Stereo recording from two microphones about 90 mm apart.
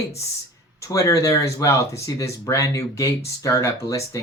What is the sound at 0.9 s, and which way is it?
Speech, 35° left (ahead or behind).